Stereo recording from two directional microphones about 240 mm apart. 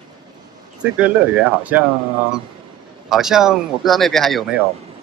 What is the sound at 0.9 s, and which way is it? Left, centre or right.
Speech, centre.